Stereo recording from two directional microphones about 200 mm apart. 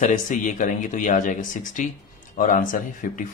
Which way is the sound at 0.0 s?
40° left (ahead or behind).